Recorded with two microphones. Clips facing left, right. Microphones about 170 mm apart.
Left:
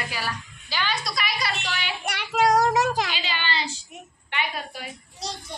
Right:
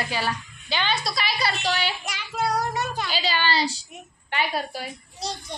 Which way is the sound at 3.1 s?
35° right (ahead or behind).